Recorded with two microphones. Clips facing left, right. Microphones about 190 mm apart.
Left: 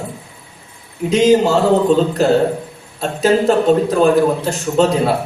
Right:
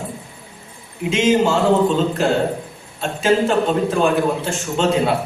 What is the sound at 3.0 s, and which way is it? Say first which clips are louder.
A man's voice: left 2 dB; 40° left (ahead or behind).